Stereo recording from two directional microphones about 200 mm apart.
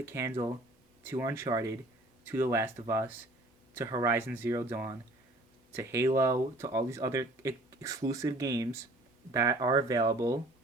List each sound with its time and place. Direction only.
0.1 s speech: 15° right (ahead or behind)